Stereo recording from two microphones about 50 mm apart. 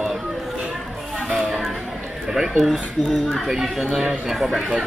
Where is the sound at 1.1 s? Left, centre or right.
Centre.